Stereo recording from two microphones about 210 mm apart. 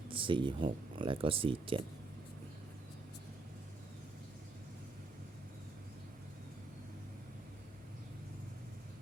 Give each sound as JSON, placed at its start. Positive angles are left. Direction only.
{"t": 0.1, "sound": "speech", "side_deg": -25}